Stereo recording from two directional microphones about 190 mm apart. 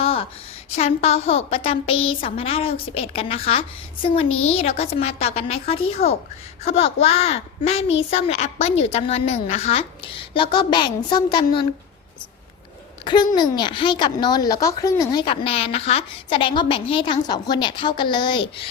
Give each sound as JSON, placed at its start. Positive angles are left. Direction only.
{"t": 0.0, "sound": "a sound", "side_deg": 30}
{"t": 0.8, "sound": "a woman's voice", "side_deg": 35}
{"t": 13.3, "sound": "speech", "side_deg": 25}